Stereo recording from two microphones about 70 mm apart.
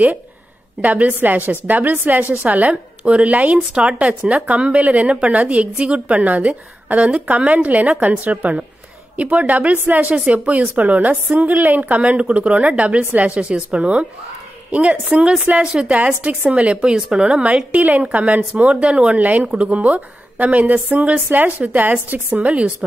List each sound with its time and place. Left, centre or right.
0.7 s a woman's voice: right